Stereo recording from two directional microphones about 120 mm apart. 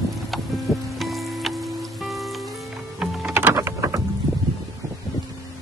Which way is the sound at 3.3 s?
20° right (ahead or behind).